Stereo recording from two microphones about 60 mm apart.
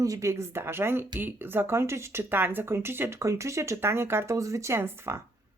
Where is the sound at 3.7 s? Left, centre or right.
Right.